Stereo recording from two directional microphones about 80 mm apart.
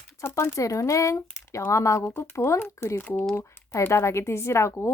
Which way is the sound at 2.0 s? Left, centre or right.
Left.